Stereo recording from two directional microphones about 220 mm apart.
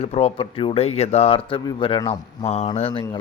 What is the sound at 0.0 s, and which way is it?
Mantra, 30° left (ahead or behind).